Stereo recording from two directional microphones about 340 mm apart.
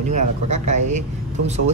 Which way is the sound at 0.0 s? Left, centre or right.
Right.